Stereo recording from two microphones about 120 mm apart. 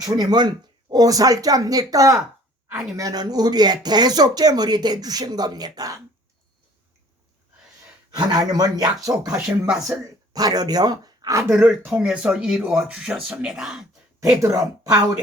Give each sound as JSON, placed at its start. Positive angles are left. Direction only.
{"t": 0.0, "sound": "speech", "side_deg": -30}
{"t": 8.1, "sound": "speech", "side_deg": -35}
{"t": 9.2, "sound": "speech", "side_deg": -5}
{"t": 10.3, "sound": "speech", "side_deg": -35}
{"t": 11.5, "sound": "speech", "side_deg": -15}
{"t": 14.4, "sound": "a woman's voice", "side_deg": -25}